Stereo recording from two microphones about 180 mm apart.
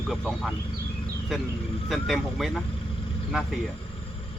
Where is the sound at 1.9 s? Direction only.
Centre (ahead or behind).